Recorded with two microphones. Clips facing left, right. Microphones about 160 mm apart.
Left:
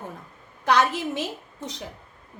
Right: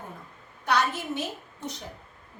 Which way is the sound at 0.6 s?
90° left.